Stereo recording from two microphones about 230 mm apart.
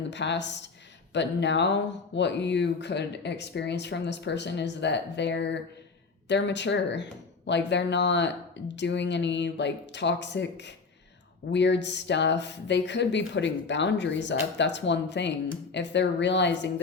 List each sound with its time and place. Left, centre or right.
0.1 s speech: left
11.5 s speech: left